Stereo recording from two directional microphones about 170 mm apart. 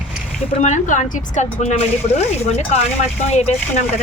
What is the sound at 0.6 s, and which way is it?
A woman's voice, 45° left (ahead or behind).